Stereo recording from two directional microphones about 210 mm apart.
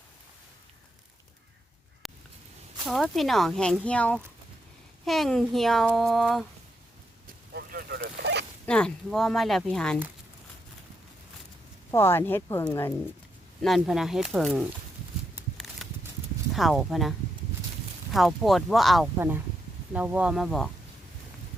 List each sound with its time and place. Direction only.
2.8 s speech: centre (ahead or behind)
7.5 s boat: 50° right (ahead or behind)
8.6 s speech: 5° left (ahead or behind)
11.9 s speech: 10° left (ahead or behind)
13.6 s speech: centre (ahead or behind)
15.4 s a sound: centre (ahead or behind)
16.6 s speech: centre (ahead or behind)
19.1 s speech: 10° right (ahead or behind)